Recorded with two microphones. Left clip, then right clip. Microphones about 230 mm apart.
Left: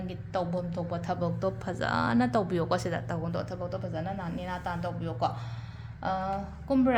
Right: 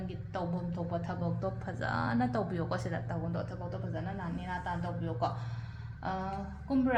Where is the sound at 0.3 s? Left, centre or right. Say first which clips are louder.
Left 6 dB; left.